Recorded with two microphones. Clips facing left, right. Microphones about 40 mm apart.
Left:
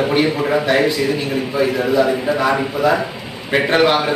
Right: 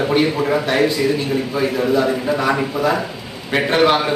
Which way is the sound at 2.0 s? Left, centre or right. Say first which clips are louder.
Left 2 dB; centre.